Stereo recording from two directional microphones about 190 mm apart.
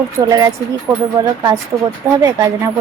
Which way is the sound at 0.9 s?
5° left (ahead or behind).